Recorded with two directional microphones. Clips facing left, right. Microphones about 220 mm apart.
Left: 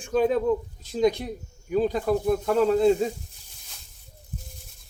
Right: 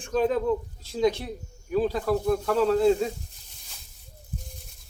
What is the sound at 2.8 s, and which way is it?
Speech, centre (ahead or behind).